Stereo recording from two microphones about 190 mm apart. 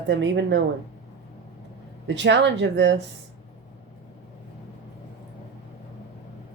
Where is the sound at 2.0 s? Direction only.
70° right (ahead or behind).